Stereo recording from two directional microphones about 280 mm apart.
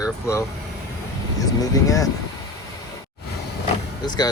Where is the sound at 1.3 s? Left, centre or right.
Centre.